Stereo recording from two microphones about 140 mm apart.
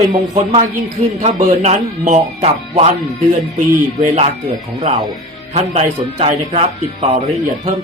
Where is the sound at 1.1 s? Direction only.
60° right (ahead or behind).